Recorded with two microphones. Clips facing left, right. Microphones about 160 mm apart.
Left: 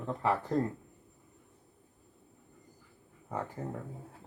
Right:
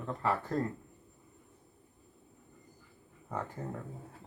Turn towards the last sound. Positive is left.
turn(degrees=10)  # may be behind; listen again after turning